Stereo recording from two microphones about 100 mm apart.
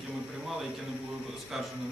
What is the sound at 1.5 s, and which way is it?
Speech, centre (ahead or behind).